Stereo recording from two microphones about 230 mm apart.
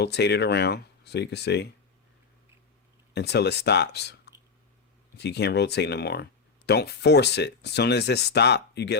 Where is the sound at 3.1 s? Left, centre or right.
Left.